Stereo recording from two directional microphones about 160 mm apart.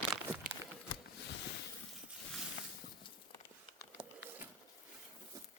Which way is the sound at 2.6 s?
55° left (ahead or behind).